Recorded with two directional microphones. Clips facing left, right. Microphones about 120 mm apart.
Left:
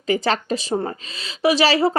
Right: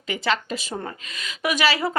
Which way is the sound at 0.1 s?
40° left (ahead or behind).